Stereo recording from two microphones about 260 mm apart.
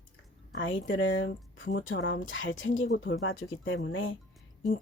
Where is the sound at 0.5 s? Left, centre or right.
Left.